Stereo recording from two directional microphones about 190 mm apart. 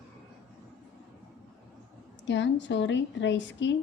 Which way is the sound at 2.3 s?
70° left (ahead or behind).